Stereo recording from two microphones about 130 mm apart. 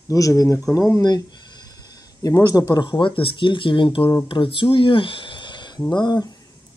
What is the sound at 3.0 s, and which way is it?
Speech, 45° left (ahead or behind).